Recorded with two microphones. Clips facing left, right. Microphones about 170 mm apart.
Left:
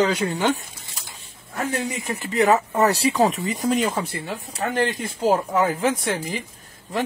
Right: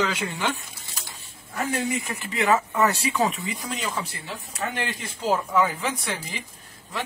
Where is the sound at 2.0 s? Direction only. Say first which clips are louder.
Left 5 dB; 35° left (ahead or behind).